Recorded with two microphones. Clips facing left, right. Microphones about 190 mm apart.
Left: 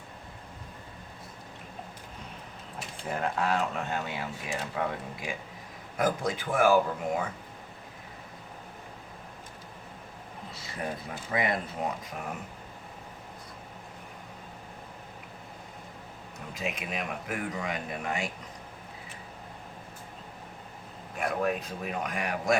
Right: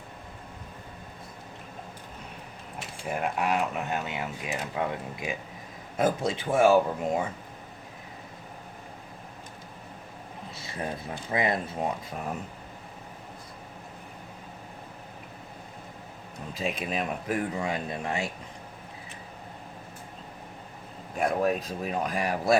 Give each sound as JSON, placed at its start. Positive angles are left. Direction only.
{"t": 3.0, "sound": "speech", "side_deg": -10}
{"t": 11.3, "sound": "speech", "side_deg": -25}
{"t": 16.6, "sound": "speech", "side_deg": -30}
{"t": 21.2, "sound": "speech", "side_deg": -35}